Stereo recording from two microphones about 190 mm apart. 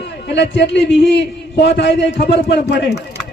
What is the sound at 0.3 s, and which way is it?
A man's voice, 65° left (ahead or behind).